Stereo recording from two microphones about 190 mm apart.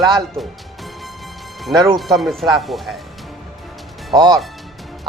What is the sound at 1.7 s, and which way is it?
Speech, 20° right (ahead or behind).